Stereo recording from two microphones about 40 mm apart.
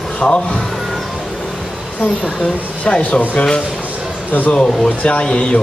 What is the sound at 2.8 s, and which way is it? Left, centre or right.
Speech, left.